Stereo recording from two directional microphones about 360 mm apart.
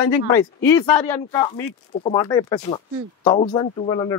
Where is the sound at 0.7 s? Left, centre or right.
Centre.